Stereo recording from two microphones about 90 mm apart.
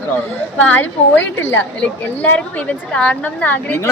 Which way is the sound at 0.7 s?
20° left (ahead or behind).